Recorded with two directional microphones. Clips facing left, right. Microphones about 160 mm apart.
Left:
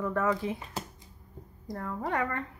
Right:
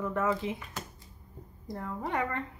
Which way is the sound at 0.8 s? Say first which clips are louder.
Left 3 dB; 30° left (ahead or behind).